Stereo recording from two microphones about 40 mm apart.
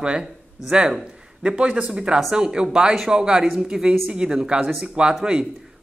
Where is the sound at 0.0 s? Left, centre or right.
Right.